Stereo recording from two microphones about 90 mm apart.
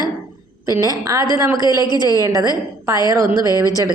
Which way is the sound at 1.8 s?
50° left (ahead or behind).